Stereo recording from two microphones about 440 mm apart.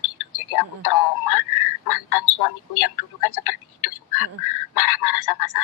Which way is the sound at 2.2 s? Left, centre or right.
Left.